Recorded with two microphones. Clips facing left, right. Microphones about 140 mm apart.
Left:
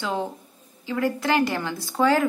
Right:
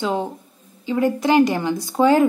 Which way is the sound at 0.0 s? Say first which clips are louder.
Right 4 dB; 15° right (ahead or behind).